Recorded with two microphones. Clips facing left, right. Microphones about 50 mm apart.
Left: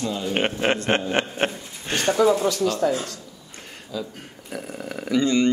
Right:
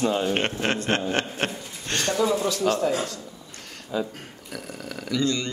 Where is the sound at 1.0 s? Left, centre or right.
Centre.